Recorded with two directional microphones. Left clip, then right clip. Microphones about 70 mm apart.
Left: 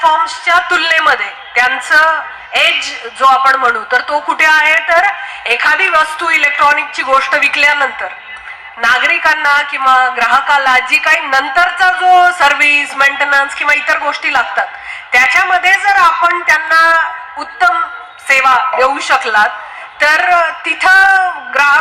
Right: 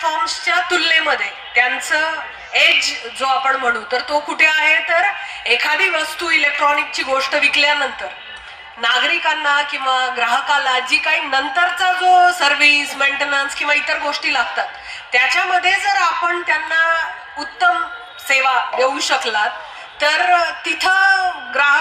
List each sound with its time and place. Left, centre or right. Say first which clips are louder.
0.0 s a woman's voice: left 8 dB; left
9.2 s a woman's voice: left 6 dB; left
9.7 s a woman's voice: left 8 dB; left
18.3 s a woman's voice: left 6 dB; left